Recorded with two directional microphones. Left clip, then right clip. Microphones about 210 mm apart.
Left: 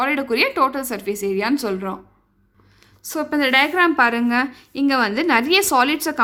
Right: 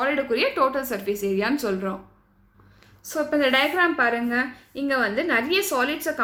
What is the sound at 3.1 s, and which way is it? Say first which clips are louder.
A woman's voice: left 2 dB; 40° left (ahead or behind).